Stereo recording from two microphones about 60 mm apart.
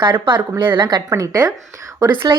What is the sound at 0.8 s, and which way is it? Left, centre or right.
Speech, right.